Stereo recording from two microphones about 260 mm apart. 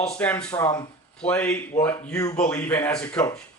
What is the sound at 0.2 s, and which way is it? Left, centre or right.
Speech, centre.